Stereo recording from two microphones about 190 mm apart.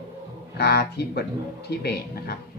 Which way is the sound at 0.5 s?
55° left (ahead or behind).